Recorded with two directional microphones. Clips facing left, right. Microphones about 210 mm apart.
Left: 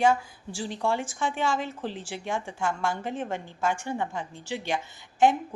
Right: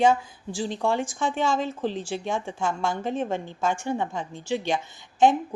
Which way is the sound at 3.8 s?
15° right (ahead or behind).